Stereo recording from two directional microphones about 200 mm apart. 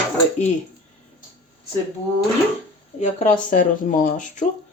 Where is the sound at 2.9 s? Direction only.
35° left (ahead or behind).